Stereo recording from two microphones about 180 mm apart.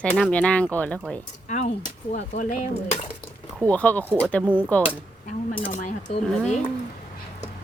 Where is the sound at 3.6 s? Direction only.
10° left (ahead or behind).